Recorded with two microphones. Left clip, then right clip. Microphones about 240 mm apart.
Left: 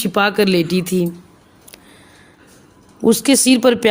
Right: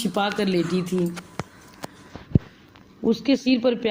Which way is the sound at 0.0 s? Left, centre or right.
Left.